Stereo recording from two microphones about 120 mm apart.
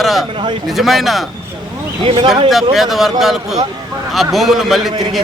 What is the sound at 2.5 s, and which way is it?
A man's voice, centre (ahead or behind).